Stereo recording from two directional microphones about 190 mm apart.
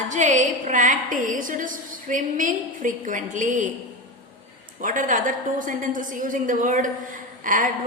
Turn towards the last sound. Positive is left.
turn(degrees=-45)  # may be behind; listen again after turning